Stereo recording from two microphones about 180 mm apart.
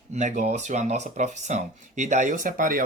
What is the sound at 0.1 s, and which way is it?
Speech, 45° right (ahead or behind).